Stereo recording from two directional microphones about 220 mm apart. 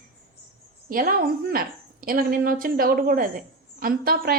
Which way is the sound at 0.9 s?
40° right (ahead or behind).